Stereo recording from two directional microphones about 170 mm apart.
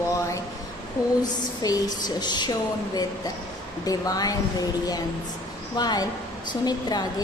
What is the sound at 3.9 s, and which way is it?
Speech, 20° left (ahead or behind).